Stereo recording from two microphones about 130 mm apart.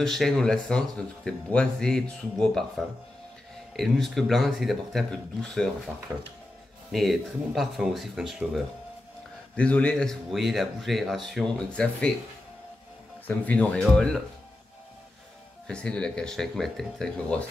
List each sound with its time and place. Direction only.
0.0 s speech: centre (ahead or behind)
6.1 s speech: 20° right (ahead or behind)
6.9 s speech: centre (ahead or behind)
9.6 s speech: 10° left (ahead or behind)
13.3 s speech: 10° left (ahead or behind)
15.6 s speech: 5° left (ahead or behind)